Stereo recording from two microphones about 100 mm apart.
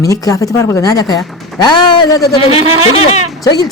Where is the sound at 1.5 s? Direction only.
40° left (ahead or behind).